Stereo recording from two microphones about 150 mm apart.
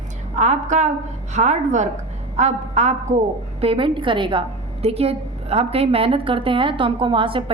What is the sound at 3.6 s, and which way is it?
A woman's voice, 35° right (ahead or behind).